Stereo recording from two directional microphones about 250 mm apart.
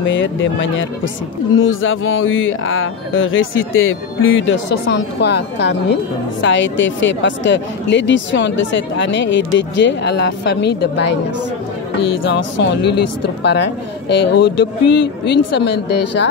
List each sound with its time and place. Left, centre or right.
0.0 s a woman's voice: left
12.2 s speech: left